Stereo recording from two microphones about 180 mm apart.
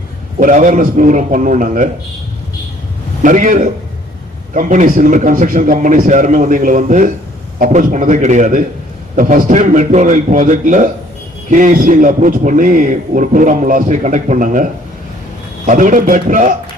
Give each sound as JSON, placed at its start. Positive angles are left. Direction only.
{"t": 0.3, "sound": "a man's voice", "side_deg": -45}
{"t": 3.2, "sound": "a man's voice", "side_deg": -45}